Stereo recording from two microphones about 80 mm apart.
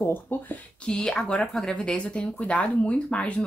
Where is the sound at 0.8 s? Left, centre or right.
Centre.